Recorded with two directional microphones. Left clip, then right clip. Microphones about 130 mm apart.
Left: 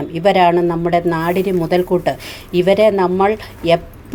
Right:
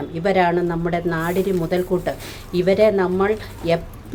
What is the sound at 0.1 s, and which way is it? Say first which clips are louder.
Speech: left 6 dB; 50° left (ahead or behind).